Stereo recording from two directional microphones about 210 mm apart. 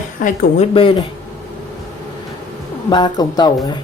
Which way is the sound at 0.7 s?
25° left (ahead or behind).